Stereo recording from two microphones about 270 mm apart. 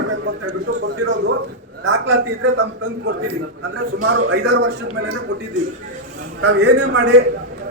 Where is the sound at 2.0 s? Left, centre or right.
Right.